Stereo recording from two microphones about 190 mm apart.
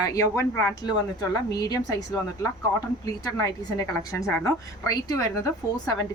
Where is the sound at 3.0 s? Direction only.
20° left (ahead or behind).